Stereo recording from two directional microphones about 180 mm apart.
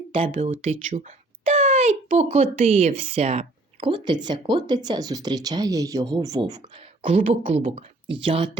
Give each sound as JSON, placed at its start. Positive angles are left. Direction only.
{"t": 0.3, "sound": "a child's voice", "side_deg": -35}
{"t": 7.3, "sound": "speech", "side_deg": -35}